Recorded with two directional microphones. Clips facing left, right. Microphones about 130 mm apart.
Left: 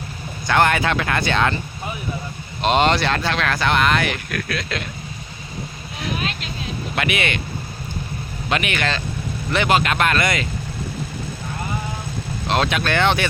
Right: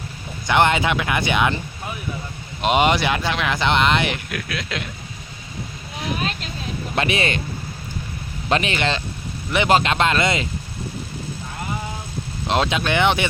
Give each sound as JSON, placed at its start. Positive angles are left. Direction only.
{"t": 0.4, "sound": "speech", "side_deg": -20}
{"t": 2.6, "sound": "speech", "side_deg": -10}
{"t": 4.3, "sound": "speech", "side_deg": -15}
{"t": 6.9, "sound": "speech", "side_deg": -30}
{"t": 8.4, "sound": "speech", "side_deg": -30}
{"t": 12.5, "sound": "speech", "side_deg": -20}